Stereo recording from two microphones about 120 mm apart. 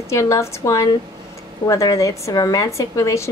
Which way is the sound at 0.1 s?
25° left (ahead or behind).